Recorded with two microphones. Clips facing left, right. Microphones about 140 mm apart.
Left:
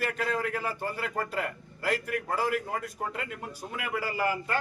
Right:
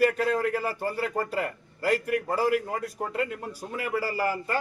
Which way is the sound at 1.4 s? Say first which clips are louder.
Right 3 dB; 40° right (ahead or behind).